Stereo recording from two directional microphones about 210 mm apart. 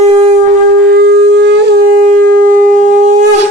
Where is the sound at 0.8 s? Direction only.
50° right (ahead or behind).